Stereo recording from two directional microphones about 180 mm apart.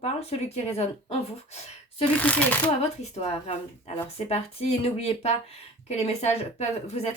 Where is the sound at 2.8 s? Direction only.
35° left (ahead or behind).